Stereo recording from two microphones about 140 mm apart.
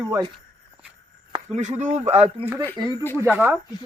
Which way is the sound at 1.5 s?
55° right (ahead or behind).